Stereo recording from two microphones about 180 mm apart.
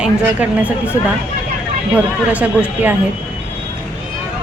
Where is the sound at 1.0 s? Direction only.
40° left (ahead or behind).